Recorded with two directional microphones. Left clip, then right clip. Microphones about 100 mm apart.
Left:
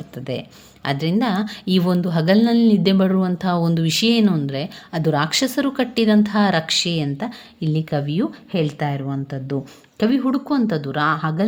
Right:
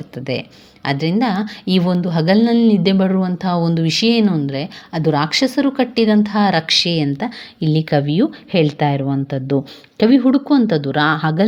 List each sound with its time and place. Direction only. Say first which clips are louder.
0.3 s a woman's voice: right 5 dB; 10° right (ahead or behind)
6.7 s speech: right 5 dB; 15° right (ahead or behind)
8.9 s a woman's voice: right 7 dB; 40° right (ahead or behind)